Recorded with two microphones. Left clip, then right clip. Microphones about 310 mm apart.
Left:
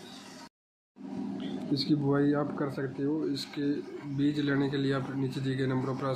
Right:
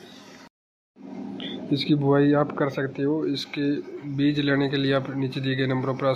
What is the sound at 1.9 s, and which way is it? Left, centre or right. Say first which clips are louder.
Speech: right 8 dB; centre.